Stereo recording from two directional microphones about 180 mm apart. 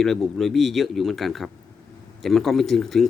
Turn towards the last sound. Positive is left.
turn(degrees=0)  # may be behind; listen again after turning